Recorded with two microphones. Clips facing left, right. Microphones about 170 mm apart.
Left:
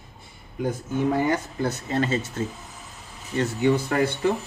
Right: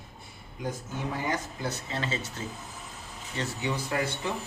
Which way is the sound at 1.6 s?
50° left (ahead or behind).